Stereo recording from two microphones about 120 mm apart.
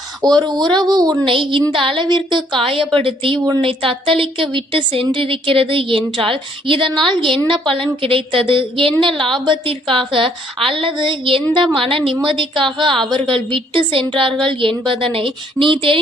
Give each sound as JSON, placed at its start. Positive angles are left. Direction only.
{"t": 0.2, "sound": "a woman's voice", "side_deg": -35}